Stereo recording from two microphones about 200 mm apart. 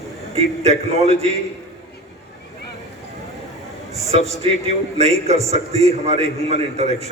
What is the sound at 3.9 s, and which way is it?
A man's voice, 30° right (ahead or behind).